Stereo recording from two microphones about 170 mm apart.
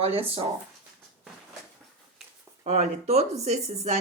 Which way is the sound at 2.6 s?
40° right (ahead or behind).